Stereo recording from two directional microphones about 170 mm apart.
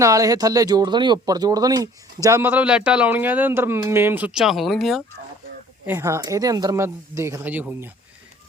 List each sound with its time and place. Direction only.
0.0 s speech: 20° right (ahead or behind); by 5.0 s centre (ahead or behind)
5.8 s speech: 15° right (ahead or behind)